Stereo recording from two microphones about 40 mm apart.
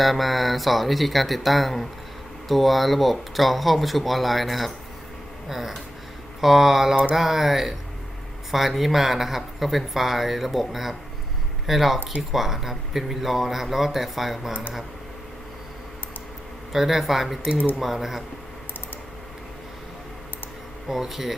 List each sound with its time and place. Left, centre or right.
0.0 s speech: centre
6.9 s mantra: right
7.2 s speech: centre
16.7 s speech: centre
20.8 s speech: centre